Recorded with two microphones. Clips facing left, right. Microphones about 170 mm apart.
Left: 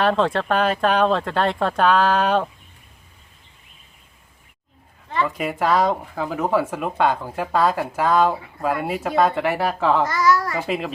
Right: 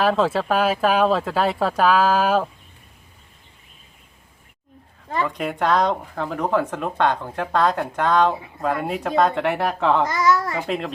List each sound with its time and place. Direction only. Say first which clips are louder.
0.0 s speech: even; 5° right (ahead or behind)
5.2 s speech: left 1 dB; 5° left (ahead or behind)
10.1 s a child's voice: even; 20° right (ahead or behind)
10.7 s speech: left 1 dB; 5° left (ahead or behind)